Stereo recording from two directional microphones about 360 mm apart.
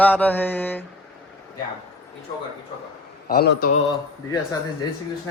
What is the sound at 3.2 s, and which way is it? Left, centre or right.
Speech, left.